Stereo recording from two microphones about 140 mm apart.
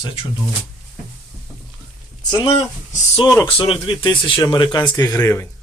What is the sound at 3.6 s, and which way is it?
Speech, 40° left (ahead or behind).